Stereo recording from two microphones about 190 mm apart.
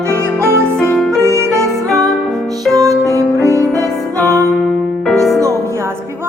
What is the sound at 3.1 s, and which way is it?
Music, 15° right (ahead or behind).